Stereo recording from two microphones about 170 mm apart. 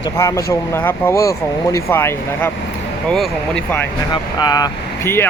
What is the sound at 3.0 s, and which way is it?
Speech, 5° left (ahead or behind).